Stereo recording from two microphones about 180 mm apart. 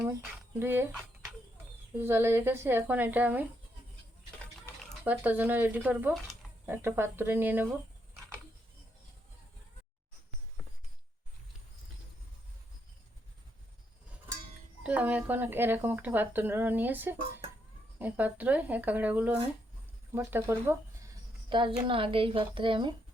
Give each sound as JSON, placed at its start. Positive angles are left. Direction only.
{"t": 0.6, "sound": "speech", "side_deg": -15}
{"t": 2.0, "sound": "speech", "side_deg": -15}
{"t": 5.0, "sound": "speech", "side_deg": -10}
{"t": 14.8, "sound": "speech", "side_deg": -10}
{"t": 21.5, "sound": "a woman's voice", "side_deg": -30}